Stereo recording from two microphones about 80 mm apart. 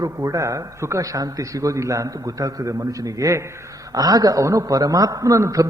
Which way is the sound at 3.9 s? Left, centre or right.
Right.